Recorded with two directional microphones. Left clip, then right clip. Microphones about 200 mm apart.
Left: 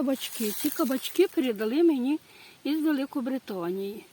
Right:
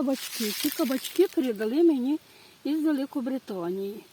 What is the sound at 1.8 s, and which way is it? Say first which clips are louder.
Speech: right 1 dB; 10° right (ahead or behind).